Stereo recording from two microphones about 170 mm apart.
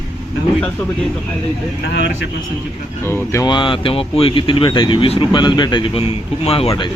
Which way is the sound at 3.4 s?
30° left (ahead or behind).